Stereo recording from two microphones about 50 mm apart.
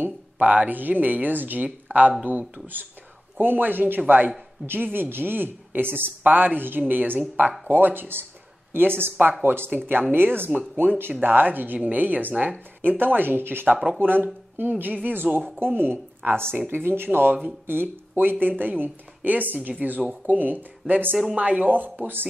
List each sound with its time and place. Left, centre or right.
0.0 s speech: right
7.6 s a woman's voice: right